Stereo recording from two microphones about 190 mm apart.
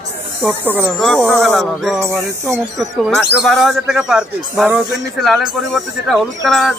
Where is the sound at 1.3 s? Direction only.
Centre (ahead or behind).